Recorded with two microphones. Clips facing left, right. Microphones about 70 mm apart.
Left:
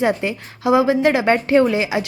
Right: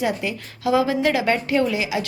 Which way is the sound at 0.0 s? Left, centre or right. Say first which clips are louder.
Left 5 dB; left.